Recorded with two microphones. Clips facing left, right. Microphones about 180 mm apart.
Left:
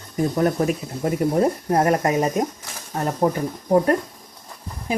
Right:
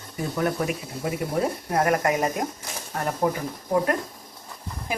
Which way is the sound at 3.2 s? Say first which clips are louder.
Left 4 dB; 40° left (ahead or behind).